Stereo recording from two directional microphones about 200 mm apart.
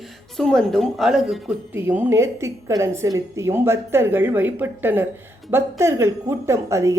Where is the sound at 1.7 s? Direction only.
10° right (ahead or behind).